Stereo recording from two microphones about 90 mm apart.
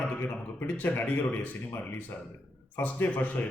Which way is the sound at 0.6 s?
20° left (ahead or behind).